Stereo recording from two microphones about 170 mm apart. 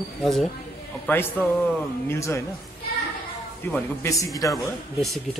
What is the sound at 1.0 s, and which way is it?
A man's voice, 10° left (ahead or behind).